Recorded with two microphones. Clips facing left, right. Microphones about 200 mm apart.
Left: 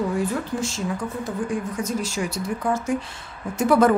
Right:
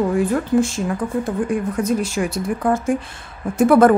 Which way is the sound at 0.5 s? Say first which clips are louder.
Right 8 dB; 55° right (ahead or behind).